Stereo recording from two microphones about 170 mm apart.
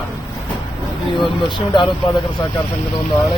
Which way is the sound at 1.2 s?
30° left (ahead or behind).